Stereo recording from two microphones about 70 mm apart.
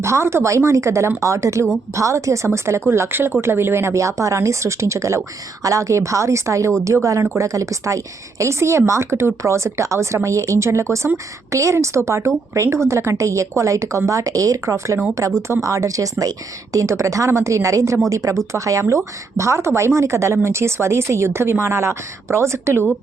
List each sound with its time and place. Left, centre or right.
0.0 s a woman's voice: right